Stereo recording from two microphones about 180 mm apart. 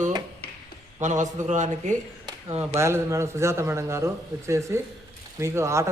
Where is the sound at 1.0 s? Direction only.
40° right (ahead or behind).